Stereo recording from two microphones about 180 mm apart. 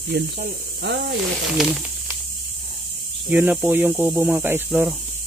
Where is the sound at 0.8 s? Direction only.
75° right (ahead or behind).